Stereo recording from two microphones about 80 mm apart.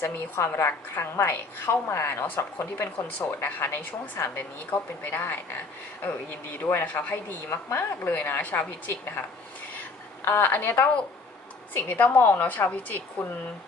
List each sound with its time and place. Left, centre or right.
0.0 s a woman's voice: left
6.6 s a woman's voice: left
7.1 s a woman's voice: left
10.2 s a woman's voice: left